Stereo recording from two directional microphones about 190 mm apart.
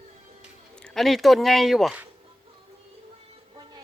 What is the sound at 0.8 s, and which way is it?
Speech, 5° left (ahead or behind).